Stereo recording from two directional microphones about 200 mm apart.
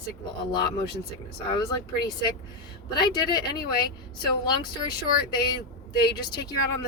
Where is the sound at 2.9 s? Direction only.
20° left (ahead or behind).